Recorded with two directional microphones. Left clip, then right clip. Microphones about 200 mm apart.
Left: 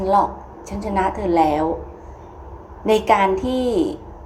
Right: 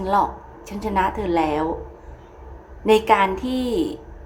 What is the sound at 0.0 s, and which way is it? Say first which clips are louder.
A woman's voice: left 3 dB; 5° right (ahead or behind).